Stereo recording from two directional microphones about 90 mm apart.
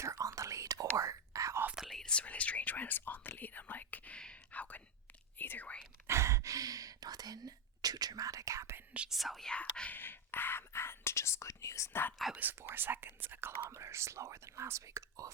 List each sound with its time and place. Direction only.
0.0 s whispering: 40° right (ahead or behind)
1.7 s whispering: centre (ahead or behind); by 5.8 s 15° left (ahead or behind)
6.1 s whispering: 30° right (ahead or behind)
8.9 s whispering: 15° right (ahead or behind)
9.1 s speech: centre (ahead or behind)
9.5 s whispering: 10° left (ahead or behind); by 12.0 s 35° left (ahead or behind)
12.4 s speech: 25° right (ahead or behind)